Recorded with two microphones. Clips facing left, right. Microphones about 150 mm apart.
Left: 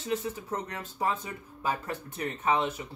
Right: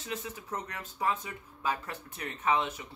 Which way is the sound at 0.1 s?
30° left (ahead or behind).